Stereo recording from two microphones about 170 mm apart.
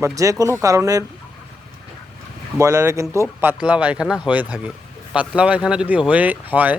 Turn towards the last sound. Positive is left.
turn(degrees=-10)  # may be behind; listen again after turning